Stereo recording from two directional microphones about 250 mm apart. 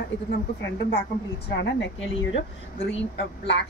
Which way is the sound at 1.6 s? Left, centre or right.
Left.